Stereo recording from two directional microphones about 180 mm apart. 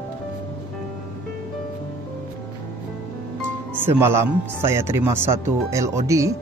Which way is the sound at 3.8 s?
15° right (ahead or behind).